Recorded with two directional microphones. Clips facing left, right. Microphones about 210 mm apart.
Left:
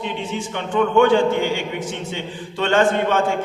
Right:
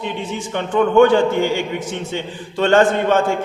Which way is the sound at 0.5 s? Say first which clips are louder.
Right 4 dB; 40° right (ahead or behind).